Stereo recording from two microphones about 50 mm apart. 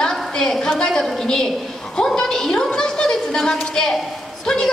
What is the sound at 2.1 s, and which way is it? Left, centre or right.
A woman's voice, centre.